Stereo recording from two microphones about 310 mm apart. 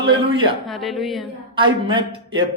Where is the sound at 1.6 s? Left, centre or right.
Centre.